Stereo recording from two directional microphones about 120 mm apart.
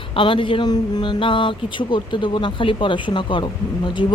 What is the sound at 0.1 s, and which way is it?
Speech, 45° left (ahead or behind).